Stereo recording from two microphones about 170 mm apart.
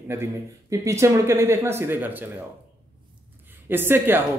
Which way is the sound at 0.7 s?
15° right (ahead or behind).